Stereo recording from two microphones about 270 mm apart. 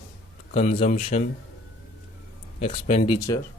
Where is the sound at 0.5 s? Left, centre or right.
Left.